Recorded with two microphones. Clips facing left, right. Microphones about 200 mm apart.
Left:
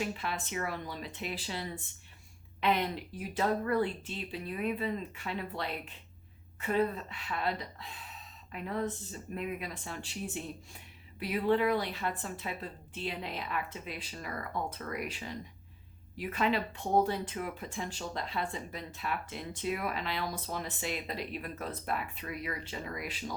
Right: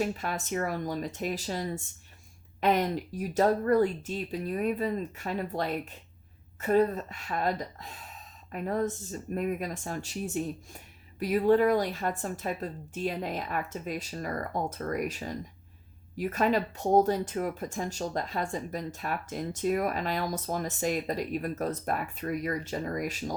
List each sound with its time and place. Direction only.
0.0 s speech: 45° right (ahead or behind)